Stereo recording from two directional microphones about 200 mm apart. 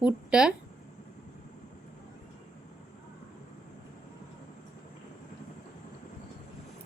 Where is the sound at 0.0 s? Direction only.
5° right (ahead or behind).